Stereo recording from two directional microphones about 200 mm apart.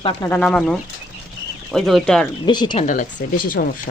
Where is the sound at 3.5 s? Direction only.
45° left (ahead or behind).